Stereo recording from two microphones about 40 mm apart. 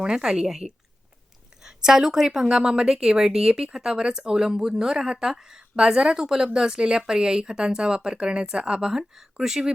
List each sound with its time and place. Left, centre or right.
0.0 s a woman's voice: centre
8.9 s a woman's voice: centre